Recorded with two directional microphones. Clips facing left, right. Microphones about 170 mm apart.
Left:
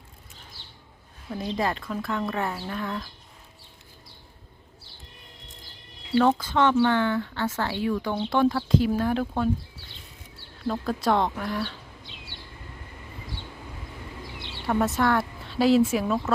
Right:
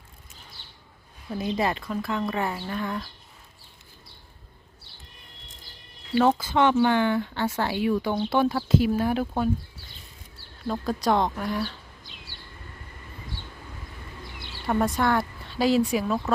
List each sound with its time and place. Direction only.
0.6 s a sound: centre (ahead or behind)
1.4 s speech: 5° right (ahead or behind)
6.1 s speech: 5° right (ahead or behind)
10.7 s speech: centre (ahead or behind)
14.3 s a sound: 25° left (ahead or behind)
14.7 s speech: centre (ahead or behind)